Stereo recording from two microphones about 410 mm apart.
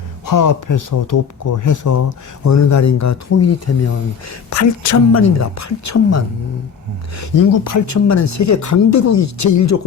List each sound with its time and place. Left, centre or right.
0.3 s speech: left